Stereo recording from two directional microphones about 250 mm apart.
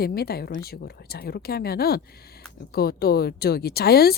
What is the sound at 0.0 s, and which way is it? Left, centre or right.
Speech, left.